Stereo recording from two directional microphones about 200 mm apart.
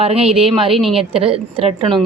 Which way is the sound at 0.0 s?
30° right (ahead or behind).